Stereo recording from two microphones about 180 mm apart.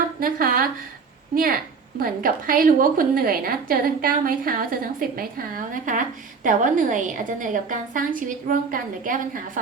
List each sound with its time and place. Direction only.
0.2 s a woman's voice: 55° right (ahead or behind)
2.0 s a woman's voice: 50° right (ahead or behind)